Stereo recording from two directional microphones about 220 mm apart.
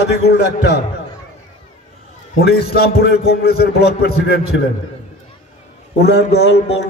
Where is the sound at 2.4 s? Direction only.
45° left (ahead or behind).